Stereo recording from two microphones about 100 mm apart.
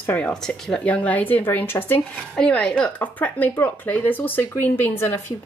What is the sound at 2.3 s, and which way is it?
Speech, 10° left (ahead or behind).